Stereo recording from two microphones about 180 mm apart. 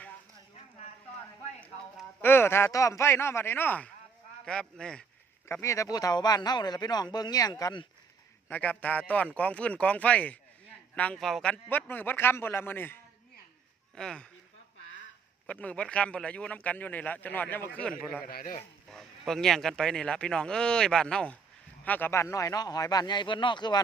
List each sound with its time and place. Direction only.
1.6 s speech: 10° left (ahead or behind)
5.5 s speech: 15° left (ahead or behind)
8.4 s speech: 10° left (ahead or behind)
15.4 s speech: 5° left (ahead or behind)
18.2 s a man's voice: 55° left (ahead or behind)
18.9 s speech: centre (ahead or behind); by 23.8 s 25° left (ahead or behind)